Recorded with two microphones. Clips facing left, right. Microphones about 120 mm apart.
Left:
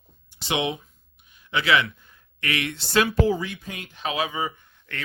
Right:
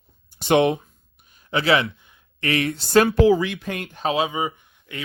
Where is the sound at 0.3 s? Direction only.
50° right (ahead or behind).